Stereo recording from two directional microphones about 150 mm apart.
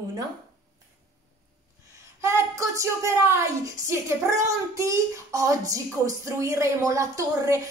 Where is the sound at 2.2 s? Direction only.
20° right (ahead or behind).